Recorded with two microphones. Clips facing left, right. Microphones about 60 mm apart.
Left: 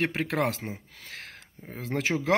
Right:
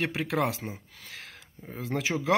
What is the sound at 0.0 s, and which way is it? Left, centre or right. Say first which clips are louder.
Speech: left 1 dB; left.